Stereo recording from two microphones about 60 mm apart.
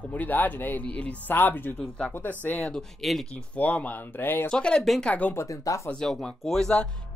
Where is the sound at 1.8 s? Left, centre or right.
Centre.